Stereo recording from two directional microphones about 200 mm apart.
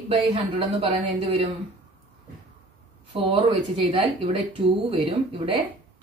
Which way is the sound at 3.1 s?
30° right (ahead or behind).